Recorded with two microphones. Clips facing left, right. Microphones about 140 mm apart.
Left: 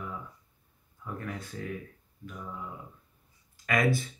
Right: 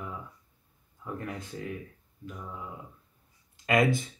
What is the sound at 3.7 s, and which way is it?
Speech, 20° right (ahead or behind).